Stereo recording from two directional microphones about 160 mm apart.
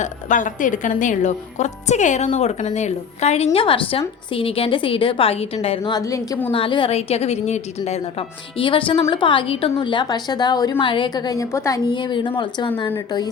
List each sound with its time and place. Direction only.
0.0 s a woman's voice: 50° left (ahead or behind); by 6.0 s 35° left (ahead or behind)
6.0 s a woman's voice: 20° left (ahead or behind)
6.5 s a woman's voice: 30° left (ahead or behind)